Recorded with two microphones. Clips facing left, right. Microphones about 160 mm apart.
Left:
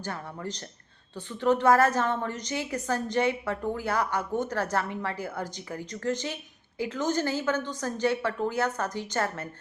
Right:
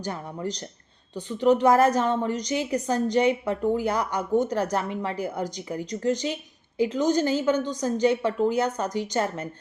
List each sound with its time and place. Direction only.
0.0 s a woman's voice: 15° right (ahead or behind)